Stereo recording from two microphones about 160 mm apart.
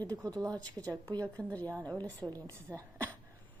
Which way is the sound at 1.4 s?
10° left (ahead or behind).